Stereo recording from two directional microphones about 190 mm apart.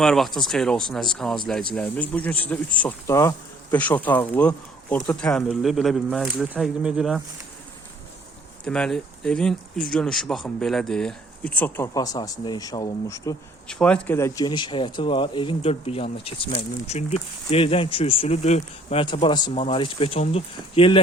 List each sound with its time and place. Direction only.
0.0 s speech: centre (ahead or behind)
8.6 s speech: 5° left (ahead or behind)
13.7 s speech: 5° left (ahead or behind); by 21.0 s 30° left (ahead or behind)